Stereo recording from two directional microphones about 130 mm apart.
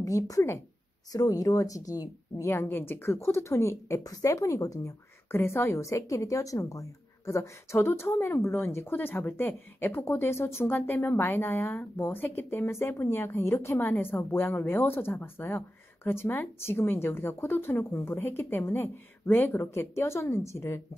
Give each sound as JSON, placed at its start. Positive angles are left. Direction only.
{"t": 0.0, "sound": "a woman's voice", "side_deg": 25}